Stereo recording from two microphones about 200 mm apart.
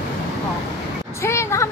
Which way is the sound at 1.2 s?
15° left (ahead or behind).